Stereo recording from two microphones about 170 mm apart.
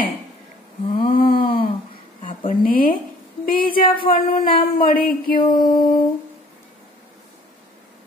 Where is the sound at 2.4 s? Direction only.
55° left (ahead or behind).